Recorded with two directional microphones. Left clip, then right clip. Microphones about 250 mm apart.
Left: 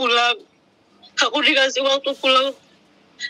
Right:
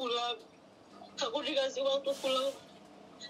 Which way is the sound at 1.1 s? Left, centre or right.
Left.